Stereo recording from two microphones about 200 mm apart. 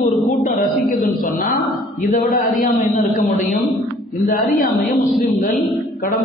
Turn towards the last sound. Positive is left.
turn(degrees=45)  # may be behind; listen again after turning